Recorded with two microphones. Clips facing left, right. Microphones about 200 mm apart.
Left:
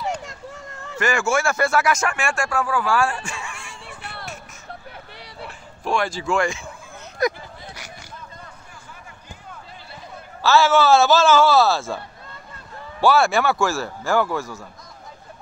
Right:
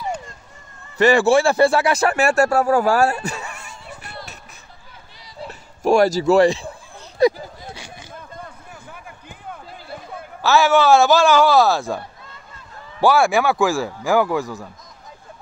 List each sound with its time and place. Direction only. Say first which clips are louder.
0.2 s vehicle: left 6 dB; 80° left
0.9 s speech: right 7 dB; 35° right (ahead or behind)
4.0 s music: left 2 dB; 65° left (ahead or behind)
5.9 s speech: right 9 dB; 40° right (ahead or behind)
7.2 s a sound: right 7 dB; 30° right (ahead or behind)
10.4 s a man's voice: right 1 dB; 15° right (ahead or behind)
13.0 s a man's voice: right 2 dB; 15° right (ahead or behind)